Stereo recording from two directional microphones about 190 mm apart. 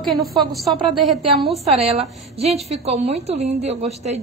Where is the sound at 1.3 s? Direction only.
30° right (ahead or behind).